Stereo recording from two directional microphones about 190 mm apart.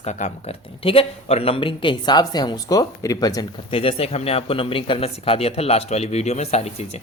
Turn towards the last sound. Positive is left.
turn(degrees=35)  # may be behind; listen again after turning